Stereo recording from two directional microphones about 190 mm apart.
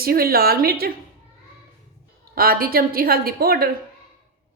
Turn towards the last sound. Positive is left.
turn(degrees=-55)  # may be behind; listen again after turning